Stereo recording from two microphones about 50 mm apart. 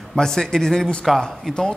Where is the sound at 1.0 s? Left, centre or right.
Centre.